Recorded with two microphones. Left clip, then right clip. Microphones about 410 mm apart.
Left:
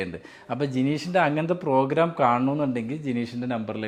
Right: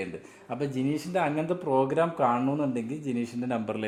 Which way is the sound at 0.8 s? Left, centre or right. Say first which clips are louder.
Left 6 dB; left.